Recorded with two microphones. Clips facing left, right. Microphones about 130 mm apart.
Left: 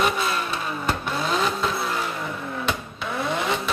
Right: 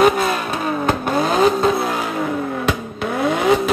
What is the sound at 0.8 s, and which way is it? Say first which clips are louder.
Vehicle: right 7 dB; 50° right (ahead or behind).